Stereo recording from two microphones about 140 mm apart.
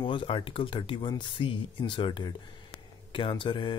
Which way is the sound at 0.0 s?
35° left (ahead or behind).